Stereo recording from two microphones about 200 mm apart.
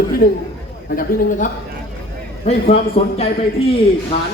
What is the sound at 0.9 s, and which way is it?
Speech, 45° left (ahead or behind).